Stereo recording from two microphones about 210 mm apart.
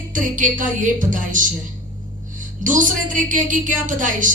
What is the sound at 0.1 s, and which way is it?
A woman's voice, 40° right (ahead or behind).